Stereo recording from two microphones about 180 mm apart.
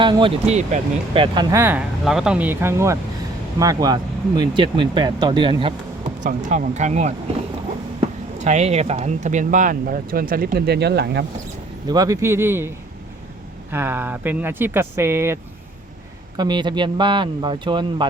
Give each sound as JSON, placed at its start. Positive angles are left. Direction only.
{"t": 0.0, "sound": "speech", "side_deg": -25}
{"t": 6.2, "sound": "speech", "side_deg": -45}
{"t": 8.4, "sound": "speech", "side_deg": -40}
{"t": 11.9, "sound": "speech", "side_deg": -20}
{"t": 16.4, "sound": "speech", "side_deg": -25}